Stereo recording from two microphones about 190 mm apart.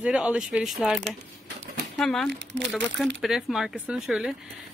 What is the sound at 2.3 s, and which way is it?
Speech, 65° right (ahead or behind).